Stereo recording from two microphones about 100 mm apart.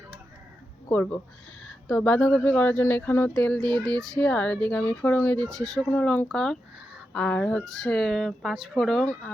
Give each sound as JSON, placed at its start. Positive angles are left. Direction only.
{"t": 0.9, "sound": "speech", "side_deg": 20}
{"t": 3.2, "sound": "speech", "side_deg": 10}
{"t": 5.5, "sound": "speech", "side_deg": 5}
{"t": 5.9, "sound": "speech", "side_deg": 20}
{"t": 6.3, "sound": "speech", "side_deg": 5}